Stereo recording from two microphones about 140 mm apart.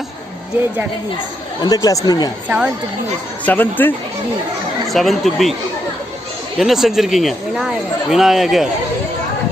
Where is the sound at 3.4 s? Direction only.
15° left (ahead or behind).